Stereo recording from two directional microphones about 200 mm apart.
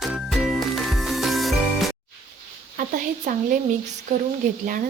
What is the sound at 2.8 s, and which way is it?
Stir, 40° right (ahead or behind).